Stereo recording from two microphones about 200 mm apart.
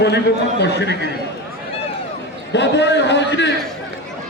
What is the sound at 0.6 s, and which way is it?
Speech, 60° left (ahead or behind).